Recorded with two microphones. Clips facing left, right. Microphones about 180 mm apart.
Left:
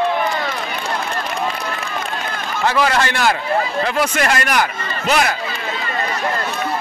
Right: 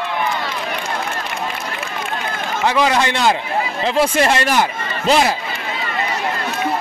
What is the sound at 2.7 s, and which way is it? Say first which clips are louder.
A man's voice: right 1 dB; 15° right (ahead or behind).